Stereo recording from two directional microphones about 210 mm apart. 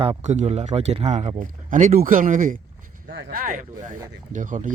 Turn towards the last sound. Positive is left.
turn(degrees=-40)  # may be behind; listen again after turning